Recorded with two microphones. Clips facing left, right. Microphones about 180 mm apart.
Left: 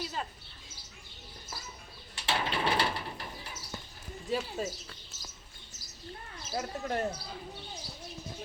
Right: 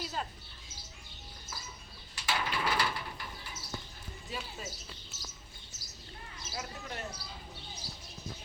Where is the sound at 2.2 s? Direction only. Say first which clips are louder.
Left 3 dB; 30° left (ahead or behind).